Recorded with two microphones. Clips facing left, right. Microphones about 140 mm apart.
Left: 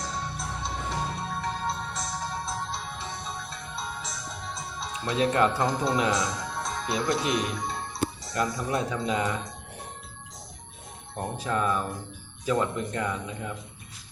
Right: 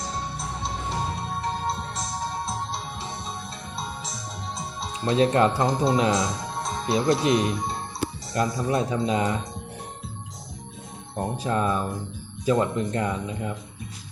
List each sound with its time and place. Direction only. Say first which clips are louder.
1.4 s music: right 3 dB; 35° right (ahead or behind)
4.5 s speech: right 2 dB; 30° right (ahead or behind)
11.2 s speech: right 3 dB; 25° right (ahead or behind)